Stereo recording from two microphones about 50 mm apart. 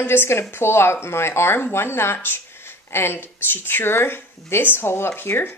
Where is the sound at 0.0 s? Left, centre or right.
Left.